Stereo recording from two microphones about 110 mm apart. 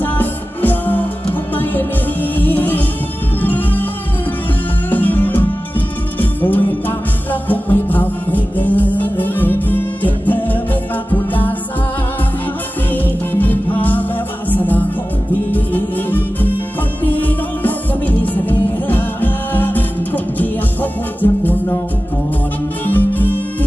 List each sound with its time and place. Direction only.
0.0 s music: 15° left (ahead or behind)
2.3 s music: 15° left (ahead or behind)
4.9 s music: 15° left (ahead or behind)
12.9 s music: 15° left (ahead or behind)
21.2 s music: 15° left (ahead or behind)
22.8 s music: 15° left (ahead or behind)